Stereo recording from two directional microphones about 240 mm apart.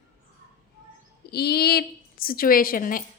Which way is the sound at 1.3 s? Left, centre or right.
Left.